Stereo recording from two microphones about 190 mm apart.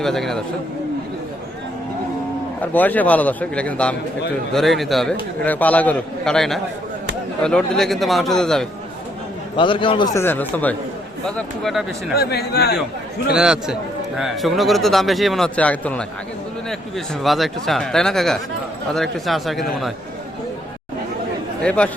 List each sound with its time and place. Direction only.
0.0 s speech: centre (ahead or behind)
2.6 s a man's voice: 10° left (ahead or behind)
9.6 s a man's voice: 25° left (ahead or behind)
10.2 s a man's voice: 10° left (ahead or behind)
12.1 s a man's voice: 55° left (ahead or behind)
13.3 s speech: 5° right (ahead or behind)
17.2 s speech: centre (ahead or behind)
21.6 s speech: 5° left (ahead or behind)